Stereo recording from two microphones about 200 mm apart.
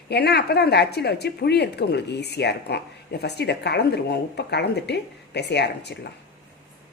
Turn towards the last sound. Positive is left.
turn(degrees=55)  # may be behind; listen again after turning